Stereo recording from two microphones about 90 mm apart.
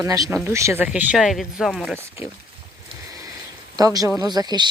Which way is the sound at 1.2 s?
Centre (ahead or behind).